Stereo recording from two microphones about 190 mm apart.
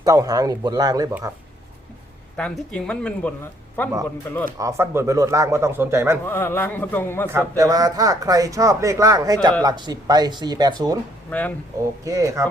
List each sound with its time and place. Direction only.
0.0 s speech: 20° right (ahead or behind)
2.3 s speech: 5° left (ahead or behind)
4.5 s speech: 15° right (ahead or behind)
6.2 s a man's voice: 10° left (ahead or behind)
7.3 s speech: 15° right (ahead or behind)
11.3 s a man's voice: 10° left (ahead or behind)
12.0 s speech: 15° right (ahead or behind)